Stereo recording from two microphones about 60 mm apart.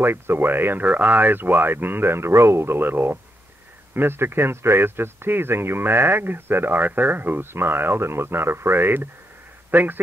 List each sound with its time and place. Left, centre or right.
0.0 s a man's voice: right